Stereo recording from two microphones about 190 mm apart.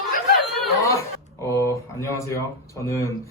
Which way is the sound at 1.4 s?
15° left (ahead or behind).